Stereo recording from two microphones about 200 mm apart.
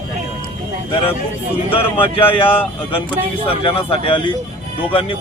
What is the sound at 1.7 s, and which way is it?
Speech, 25° left (ahead or behind).